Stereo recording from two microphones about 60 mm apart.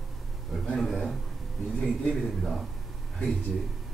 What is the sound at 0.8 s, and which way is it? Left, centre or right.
Speech, centre.